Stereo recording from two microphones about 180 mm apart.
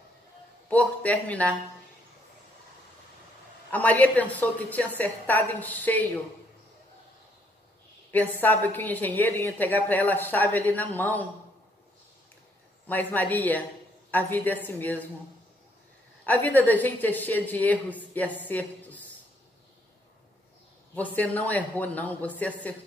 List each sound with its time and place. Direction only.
0.7 s a woman's voice: 10° left (ahead or behind)
3.7 s a woman's voice: 10° left (ahead or behind)
8.1 s a woman's voice: 10° left (ahead or behind)
12.8 s a woman's voice: 10° left (ahead or behind)
16.3 s a woman's voice: 10° left (ahead or behind)
20.9 s a woman's voice: 10° left (ahead or behind)